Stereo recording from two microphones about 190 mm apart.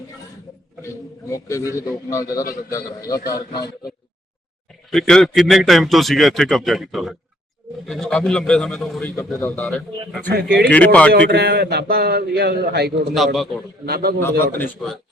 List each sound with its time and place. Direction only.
1.3 s a man's voice: 15° left (ahead or behind)
3.2 s a man's voice: 55° left (ahead or behind)
4.9 s a man's voice: centre (ahead or behind)
10.3 s a man's voice: 60° right (ahead or behind)
10.7 s a man's voice: 5° left (ahead or behind)
11.1 s a man's voice: 60° right (ahead or behind)
13.1 s a man's voice: centre (ahead or behind)
13.8 s a man's voice: 55° right (ahead or behind)
14.6 s a man's voice: centre (ahead or behind)